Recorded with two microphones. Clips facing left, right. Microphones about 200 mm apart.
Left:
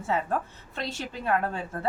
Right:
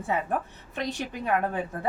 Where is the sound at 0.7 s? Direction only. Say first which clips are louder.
Right 3 dB; 15° right (ahead or behind).